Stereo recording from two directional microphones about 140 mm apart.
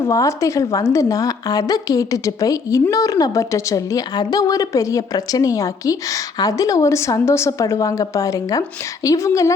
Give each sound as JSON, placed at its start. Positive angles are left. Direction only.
{"t": 0.0, "sound": "a woman's voice", "side_deg": 20}